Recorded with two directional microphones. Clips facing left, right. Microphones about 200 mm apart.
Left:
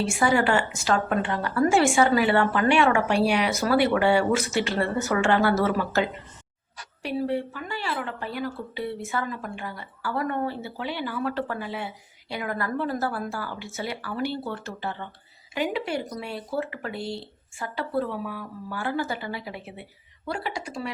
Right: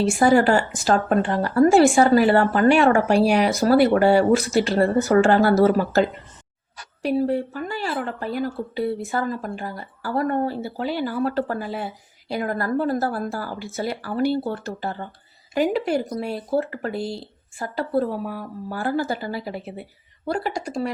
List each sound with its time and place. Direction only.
0.0 s speech: 40° right (ahead or behind)